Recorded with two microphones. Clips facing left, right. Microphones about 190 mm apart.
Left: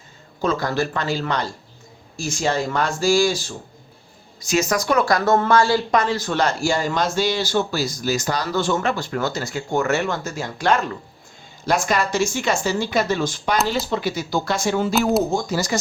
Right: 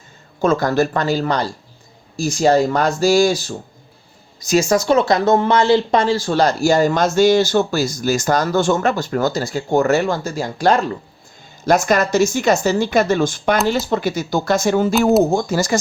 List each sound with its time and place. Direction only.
0.4 s speech: 45° right (ahead or behind)
4.4 s a woman's voice: 35° right (ahead or behind)